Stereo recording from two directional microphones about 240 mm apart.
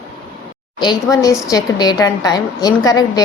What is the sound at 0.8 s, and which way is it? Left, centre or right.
Speech, centre.